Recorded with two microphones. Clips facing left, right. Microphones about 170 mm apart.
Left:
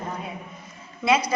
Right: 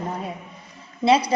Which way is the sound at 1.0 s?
30° right (ahead or behind).